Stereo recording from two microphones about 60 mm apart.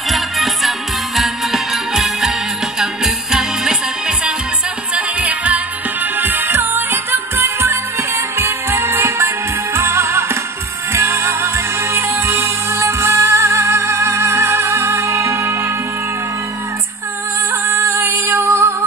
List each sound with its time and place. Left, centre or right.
0.1 s music: centre
4.9 s music: right
6.1 s music: right
17.5 s music: right